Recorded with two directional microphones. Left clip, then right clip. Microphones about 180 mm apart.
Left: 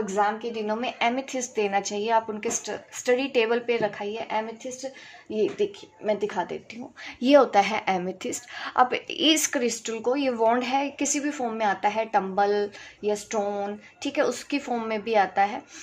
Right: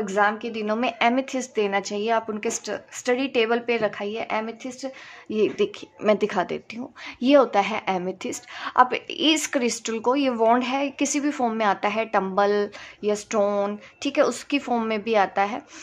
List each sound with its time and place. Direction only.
0.1 s a woman's voice: 40° right (ahead or behind)
7.2 s a woman's voice: 15° right (ahead or behind)